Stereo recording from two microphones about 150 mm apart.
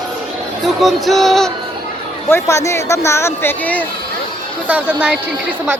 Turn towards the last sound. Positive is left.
turn(degrees=-10)  # may be behind; listen again after turning